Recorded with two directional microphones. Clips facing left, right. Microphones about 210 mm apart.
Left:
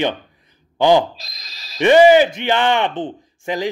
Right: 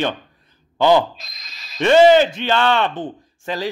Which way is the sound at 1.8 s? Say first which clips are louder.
Left 1 dB; 15° left (ahead or behind).